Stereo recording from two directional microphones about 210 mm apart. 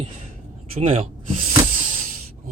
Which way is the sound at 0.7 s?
30° right (ahead or behind).